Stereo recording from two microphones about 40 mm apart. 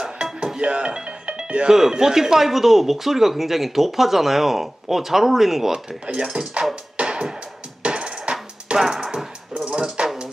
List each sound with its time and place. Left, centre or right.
0.0 s music: right
1.7 s speech: centre
5.7 s speech: right
6.6 s music: right
8.7 s a sound: centre
10.0 s a sound: right